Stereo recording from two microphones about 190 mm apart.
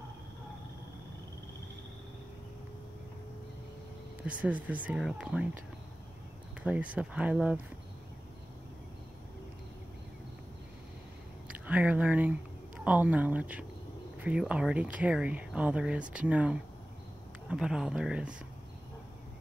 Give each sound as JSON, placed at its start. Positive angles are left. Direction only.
{"t": 4.2, "sound": "speech", "side_deg": -5}
{"t": 6.6, "sound": "speech", "side_deg": -5}
{"t": 11.6, "sound": "speech", "side_deg": -10}